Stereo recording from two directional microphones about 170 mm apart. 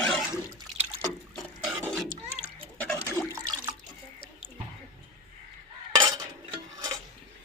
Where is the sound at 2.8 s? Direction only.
10° left (ahead or behind).